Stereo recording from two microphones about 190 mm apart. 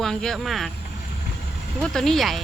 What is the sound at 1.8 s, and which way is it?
Speech, 5° left (ahead or behind).